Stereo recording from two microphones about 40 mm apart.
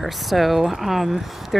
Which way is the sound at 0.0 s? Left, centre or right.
Centre.